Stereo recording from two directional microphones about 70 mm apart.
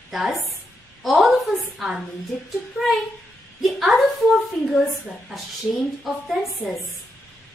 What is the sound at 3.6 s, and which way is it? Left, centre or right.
Speech, centre.